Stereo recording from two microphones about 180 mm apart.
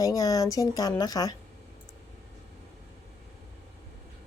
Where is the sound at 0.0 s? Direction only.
20° left (ahead or behind).